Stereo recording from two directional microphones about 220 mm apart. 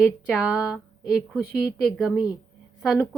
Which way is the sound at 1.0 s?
Centre (ahead or behind).